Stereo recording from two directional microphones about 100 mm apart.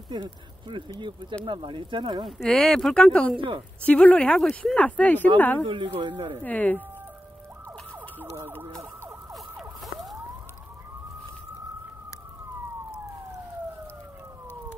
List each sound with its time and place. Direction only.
0.1 s speech: 55° right (ahead or behind)
2.2 s speech: centre (ahead or behind)
3.3 s speech: 60° right (ahead or behind)
3.8 s speech: 15° left (ahead or behind)
5.9 s speech: 55° right (ahead or behind)
6.4 s speech: 15° left (ahead or behind)
9.3 s emergency vehicle: centre (ahead or behind)